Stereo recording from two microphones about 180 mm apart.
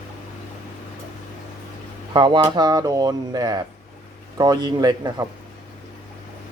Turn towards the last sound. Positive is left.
turn(degrees=-20)  # may be behind; listen again after turning